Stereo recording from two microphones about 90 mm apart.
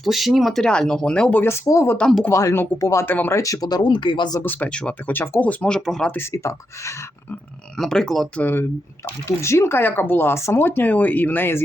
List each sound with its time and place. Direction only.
0.0 s speech: centre (ahead or behind); by 1.5 s 15° left (ahead or behind)
1.5 s speech: 30° left (ahead or behind)
2.0 s speech: 5° left (ahead or behind)
2.3 s speech: 30° left (ahead or behind); by 4.4 s 60° left (ahead or behind)
4.4 s speech: 20° left (ahead or behind)
6.3 s speech: 35° left (ahead or behind)
7.8 s speech: 5° left (ahead or behind)
8.4 s speech: 20° left (ahead or behind)